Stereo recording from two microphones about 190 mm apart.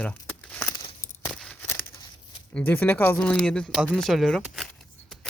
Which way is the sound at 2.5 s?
10° left (ahead or behind).